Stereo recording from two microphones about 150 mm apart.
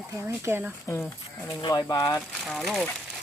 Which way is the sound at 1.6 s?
25° left (ahead or behind).